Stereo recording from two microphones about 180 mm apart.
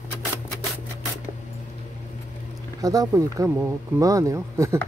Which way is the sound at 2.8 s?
20° right (ahead or behind).